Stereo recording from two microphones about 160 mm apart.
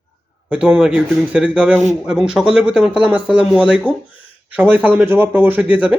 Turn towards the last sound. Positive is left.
turn(degrees=-5)  # may be behind; listen again after turning